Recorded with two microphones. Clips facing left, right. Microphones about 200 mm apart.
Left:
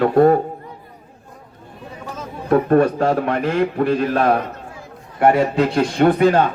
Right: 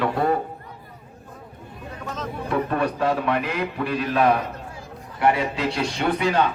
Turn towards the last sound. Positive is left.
turn(degrees=50)  # may be behind; listen again after turning